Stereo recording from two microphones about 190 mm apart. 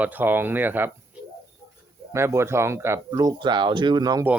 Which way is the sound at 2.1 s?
15° right (ahead or behind).